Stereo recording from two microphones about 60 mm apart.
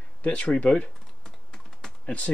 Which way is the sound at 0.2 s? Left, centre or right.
Left.